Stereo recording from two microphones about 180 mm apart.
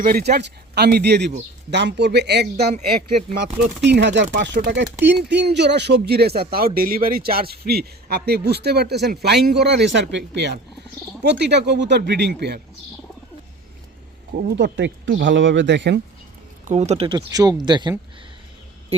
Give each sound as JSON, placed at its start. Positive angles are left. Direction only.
{"t": 0.0, "sound": "a man's voice", "side_deg": -60}
{"t": 3.8, "sound": "a man's voice", "side_deg": -75}
{"t": 14.5, "sound": "speech", "side_deg": -80}
{"t": 16.6, "sound": "speech", "side_deg": -40}
{"t": 17.2, "sound": "speech", "side_deg": -20}